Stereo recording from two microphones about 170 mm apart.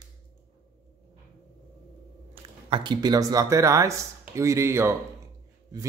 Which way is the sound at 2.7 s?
25° right (ahead or behind).